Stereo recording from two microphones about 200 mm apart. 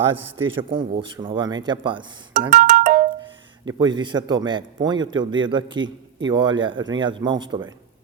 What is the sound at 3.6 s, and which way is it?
Speech, 20° right (ahead or behind).